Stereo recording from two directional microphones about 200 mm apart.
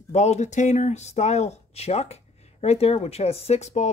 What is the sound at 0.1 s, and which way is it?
Speech, 35° left (ahead or behind).